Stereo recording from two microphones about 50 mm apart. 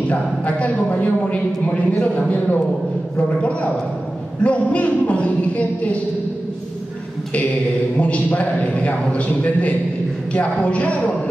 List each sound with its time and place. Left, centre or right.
0.1 s a man's voice: left
4.4 s a man's voice: left
8.0 s a man's voice: left